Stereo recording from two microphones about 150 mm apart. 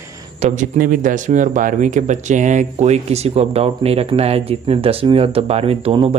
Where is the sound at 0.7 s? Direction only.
70° right (ahead or behind); by 6.1 s 40° right (ahead or behind).